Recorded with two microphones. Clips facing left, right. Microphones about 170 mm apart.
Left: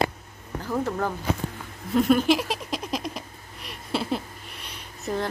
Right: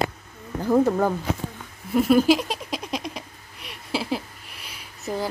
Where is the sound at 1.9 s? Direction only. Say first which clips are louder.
Right 1 dB; 5° right (ahead or behind).